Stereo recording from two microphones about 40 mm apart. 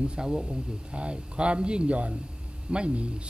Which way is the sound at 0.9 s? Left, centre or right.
Right.